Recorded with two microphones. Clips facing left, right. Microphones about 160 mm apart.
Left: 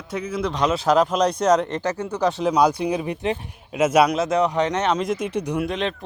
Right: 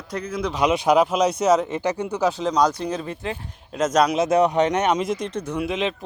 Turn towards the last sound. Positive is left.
turn(degrees=-5)  # may be behind; listen again after turning